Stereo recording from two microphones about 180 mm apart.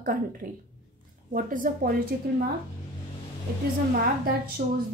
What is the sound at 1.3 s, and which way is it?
Speech, 50° right (ahead or behind).